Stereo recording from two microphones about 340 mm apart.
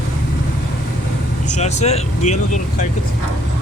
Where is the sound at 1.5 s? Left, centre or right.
Centre.